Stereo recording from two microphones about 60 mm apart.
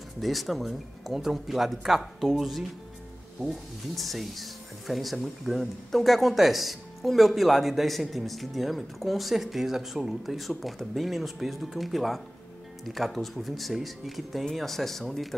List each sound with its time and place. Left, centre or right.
0.2 s speech: centre